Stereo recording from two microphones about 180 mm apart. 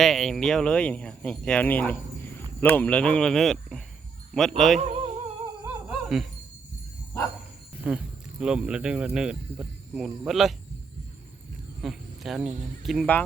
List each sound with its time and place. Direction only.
0.0 s speech: centre (ahead or behind)
4.8 s music: 35° right (ahead or behind)
5.9 s music: centre (ahead or behind)
7.9 s speech: 5° right (ahead or behind)
11.8 s a sound: centre (ahead or behind)
12.8 s speech: centre (ahead or behind)